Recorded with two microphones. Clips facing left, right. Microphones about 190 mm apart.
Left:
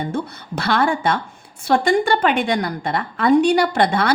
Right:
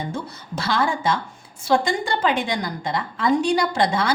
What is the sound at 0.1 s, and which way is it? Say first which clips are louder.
A woman's voice: left 5 dB; 60° left (ahead or behind).